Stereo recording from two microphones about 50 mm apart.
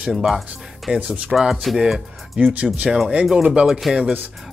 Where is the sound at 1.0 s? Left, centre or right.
Centre.